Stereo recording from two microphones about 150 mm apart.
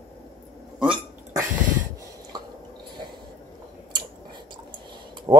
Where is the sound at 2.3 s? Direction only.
30° right (ahead or behind).